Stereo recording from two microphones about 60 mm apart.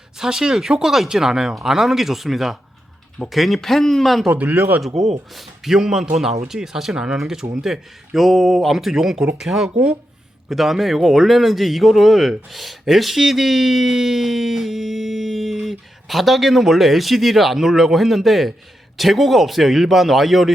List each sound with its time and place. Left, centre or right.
0.2 s a man's voice: centre
4.3 s speech: right
4.9 s a man's voice: centre
9.6 s speech: centre
10.5 s a man's voice: centre